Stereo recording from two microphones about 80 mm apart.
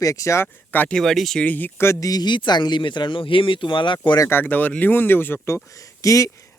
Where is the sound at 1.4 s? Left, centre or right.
Left.